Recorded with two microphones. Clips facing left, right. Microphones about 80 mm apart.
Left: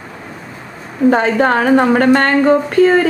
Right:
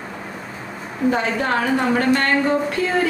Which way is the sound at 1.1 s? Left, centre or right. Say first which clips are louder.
Left 8 dB; left.